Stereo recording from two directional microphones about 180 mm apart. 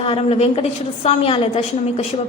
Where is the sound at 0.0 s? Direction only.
30° left (ahead or behind).